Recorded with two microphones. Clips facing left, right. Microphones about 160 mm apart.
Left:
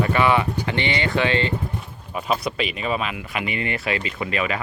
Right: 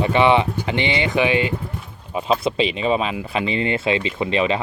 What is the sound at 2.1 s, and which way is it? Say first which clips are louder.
Speech: right 4 dB; 25° right (ahead or behind).